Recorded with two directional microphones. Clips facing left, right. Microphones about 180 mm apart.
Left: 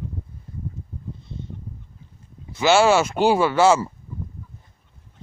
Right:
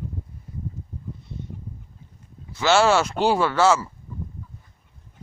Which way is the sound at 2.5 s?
15° left (ahead or behind).